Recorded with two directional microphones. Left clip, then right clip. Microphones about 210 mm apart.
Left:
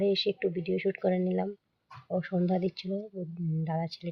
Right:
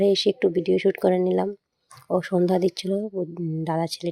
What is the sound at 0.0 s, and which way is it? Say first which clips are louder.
Speech: right 8 dB; 45° right (ahead or behind).